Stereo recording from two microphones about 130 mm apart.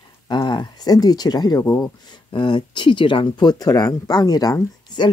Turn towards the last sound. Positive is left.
turn(degrees=30)  # may be behind; listen again after turning